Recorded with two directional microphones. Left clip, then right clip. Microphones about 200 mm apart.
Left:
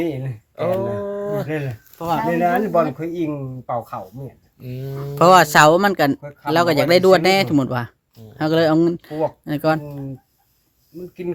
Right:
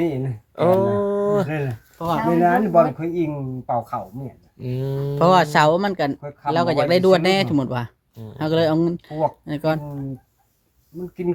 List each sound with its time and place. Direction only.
0.5 s a sound: 45° right (ahead or behind)
1.5 s speech: 20° left (ahead or behind)
4.6 s speech: 45° right (ahead or behind)
5.1 s speech: 30° left (ahead or behind)